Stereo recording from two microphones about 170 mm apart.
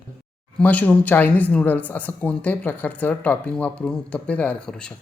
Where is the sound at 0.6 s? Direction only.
10° left (ahead or behind).